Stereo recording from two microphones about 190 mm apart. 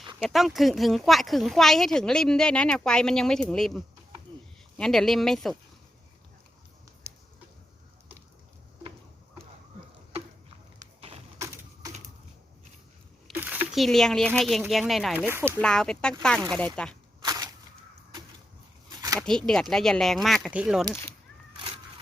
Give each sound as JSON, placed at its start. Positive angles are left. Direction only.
{"t": 0.2, "sound": "speech", "side_deg": 0}
{"t": 7.1, "sound": "finger snapping", "side_deg": -10}
{"t": 11.3, "sound": "typewriter", "side_deg": -15}
{"t": 13.2, "sound": "speech", "side_deg": -10}
{"t": 15.5, "sound": "speech", "side_deg": 5}
{"t": 17.2, "sound": "a sound", "side_deg": -20}
{"t": 19.2, "sound": "speech", "side_deg": 5}